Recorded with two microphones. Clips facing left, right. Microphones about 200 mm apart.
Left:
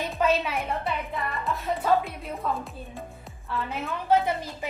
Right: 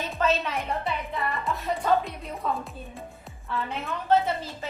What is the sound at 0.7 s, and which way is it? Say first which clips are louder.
A woman's voice: even; centre (ahead or behind).